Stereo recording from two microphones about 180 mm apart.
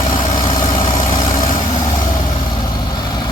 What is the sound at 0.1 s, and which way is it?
Vehicle, 25° left (ahead or behind).